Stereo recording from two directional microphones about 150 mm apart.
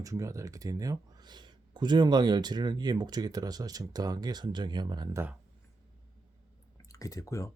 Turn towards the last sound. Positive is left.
turn(degrees=20)  # may be behind; listen again after turning